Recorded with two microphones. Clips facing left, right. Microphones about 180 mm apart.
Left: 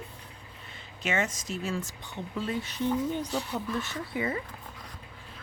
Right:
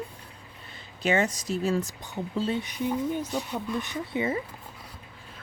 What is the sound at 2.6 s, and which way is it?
Speech, 10° right (ahead or behind).